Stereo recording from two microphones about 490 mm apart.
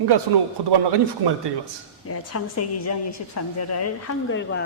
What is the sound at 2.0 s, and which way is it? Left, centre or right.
A woman's voice, left.